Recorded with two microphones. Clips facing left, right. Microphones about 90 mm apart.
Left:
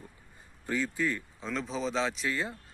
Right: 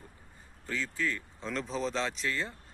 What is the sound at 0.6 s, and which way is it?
Speech, 15° left (ahead or behind).